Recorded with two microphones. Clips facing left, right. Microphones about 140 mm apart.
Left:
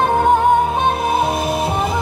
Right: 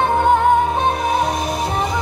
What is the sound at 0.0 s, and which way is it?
Music, centre (ahead or behind).